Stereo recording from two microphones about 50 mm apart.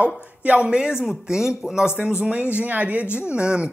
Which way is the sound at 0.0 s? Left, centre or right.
Right.